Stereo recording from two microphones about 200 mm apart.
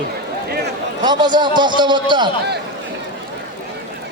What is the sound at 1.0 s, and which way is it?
A man's voice, 20° right (ahead or behind).